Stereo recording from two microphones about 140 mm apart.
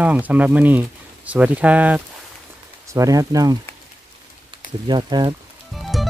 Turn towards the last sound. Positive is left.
turn(degrees=0)  # may be behind; listen again after turning